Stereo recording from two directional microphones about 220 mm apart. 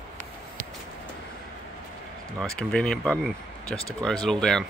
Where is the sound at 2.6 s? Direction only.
5° left (ahead or behind).